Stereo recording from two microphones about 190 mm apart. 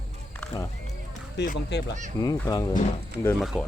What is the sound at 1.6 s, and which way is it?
Speech, 65° left (ahead or behind).